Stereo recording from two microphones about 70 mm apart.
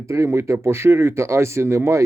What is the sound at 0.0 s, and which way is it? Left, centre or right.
Speech, right.